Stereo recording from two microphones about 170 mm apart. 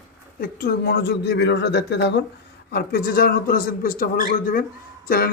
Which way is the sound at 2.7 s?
65° left (ahead or behind).